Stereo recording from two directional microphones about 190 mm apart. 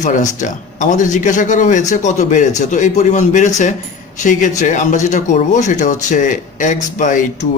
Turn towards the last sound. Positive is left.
turn(degrees=45)  # may be behind; listen again after turning